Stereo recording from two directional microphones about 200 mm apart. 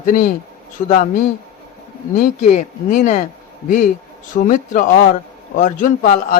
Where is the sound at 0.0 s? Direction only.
40° left (ahead or behind).